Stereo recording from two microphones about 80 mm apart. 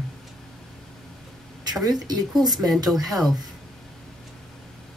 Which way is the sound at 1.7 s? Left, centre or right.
Right.